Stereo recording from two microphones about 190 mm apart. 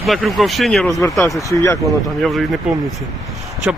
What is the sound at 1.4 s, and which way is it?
Speech, 15° left (ahead or behind).